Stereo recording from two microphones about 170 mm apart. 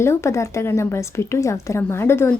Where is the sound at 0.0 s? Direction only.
15° left (ahead or behind).